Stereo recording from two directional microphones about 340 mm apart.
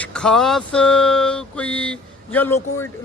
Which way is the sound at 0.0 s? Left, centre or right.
Centre.